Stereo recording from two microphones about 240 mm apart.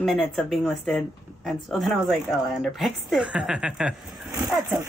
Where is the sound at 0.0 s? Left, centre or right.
Centre.